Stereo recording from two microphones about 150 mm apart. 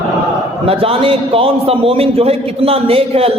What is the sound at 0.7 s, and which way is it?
A man's voice, 40° right (ahead or behind).